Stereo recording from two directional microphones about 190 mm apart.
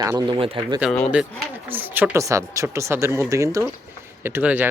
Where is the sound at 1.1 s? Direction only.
10° right (ahead or behind).